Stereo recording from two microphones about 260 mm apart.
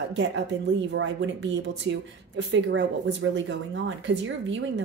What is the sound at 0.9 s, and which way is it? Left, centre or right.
Speech, right.